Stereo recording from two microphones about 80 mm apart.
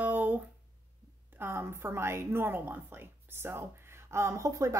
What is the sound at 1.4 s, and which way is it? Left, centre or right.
A woman's voice, right.